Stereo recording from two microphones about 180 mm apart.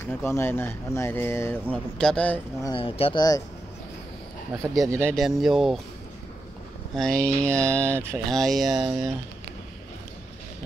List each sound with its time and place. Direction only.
0.0 s speech: 15° left (ahead or behind)
2.7 s speech: 30° left (ahead or behind)
4.8 s speech: 15° right (ahead or behind)
5.1 s speech: centre (ahead or behind)
7.0 s speech: 5° left (ahead or behind)
7.8 s speech: 15° right (ahead or behind)
8.3 s speech: centre (ahead or behind)